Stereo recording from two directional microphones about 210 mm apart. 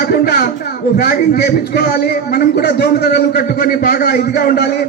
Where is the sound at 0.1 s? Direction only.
45° left (ahead or behind).